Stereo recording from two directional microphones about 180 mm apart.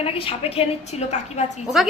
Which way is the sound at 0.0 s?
30° left (ahead or behind).